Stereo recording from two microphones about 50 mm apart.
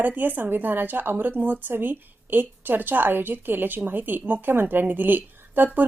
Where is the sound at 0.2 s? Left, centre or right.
Right.